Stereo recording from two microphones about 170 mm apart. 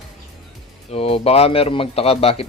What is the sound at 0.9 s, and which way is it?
Speech, 35° left (ahead or behind).